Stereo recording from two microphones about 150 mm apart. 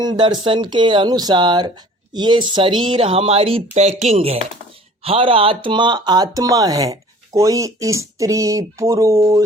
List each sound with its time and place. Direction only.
0.0 s speech: 30° right (ahead or behind)